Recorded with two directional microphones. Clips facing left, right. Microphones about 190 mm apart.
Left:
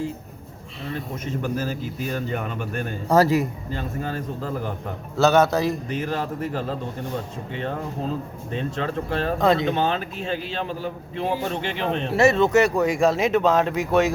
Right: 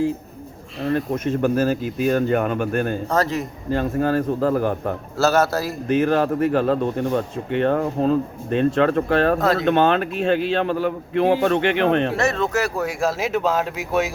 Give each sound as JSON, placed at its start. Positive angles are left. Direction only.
{"t": 0.9, "sound": "speech", "side_deg": -55}
{"t": 3.1, "sound": "a man's voice", "side_deg": 10}
{"t": 3.7, "sound": "a man's voice", "side_deg": -55}
{"t": 5.1, "sound": "speech", "side_deg": -5}
{"t": 5.9, "sound": "speech", "side_deg": -55}
{"t": 9.4, "sound": "speech", "side_deg": 0}
{"t": 9.6, "sound": "a man's voice", "side_deg": -65}
{"t": 12.1, "sound": "speech", "side_deg": 5}